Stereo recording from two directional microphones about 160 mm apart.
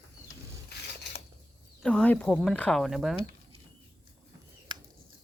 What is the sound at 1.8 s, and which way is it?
Speech, 10° left (ahead or behind).